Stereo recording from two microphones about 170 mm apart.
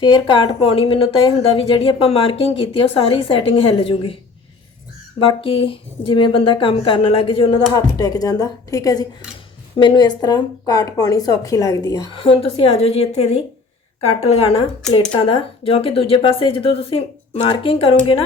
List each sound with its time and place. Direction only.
0.0 s a woman's voice: 25° left (ahead or behind)
5.2 s a woman's voice: 30° left (ahead or behind)
7.7 s speech: 20° left (ahead or behind)
12.2 s a woman's voice: 35° left (ahead or behind)